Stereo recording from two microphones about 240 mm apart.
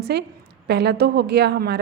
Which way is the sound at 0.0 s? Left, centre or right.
Right.